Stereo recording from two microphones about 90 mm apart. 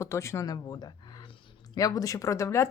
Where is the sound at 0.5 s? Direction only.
50° left (ahead or behind); by 2.7 s 30° left (ahead or behind).